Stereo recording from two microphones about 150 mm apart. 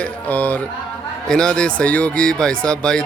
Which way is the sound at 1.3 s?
5° left (ahead or behind).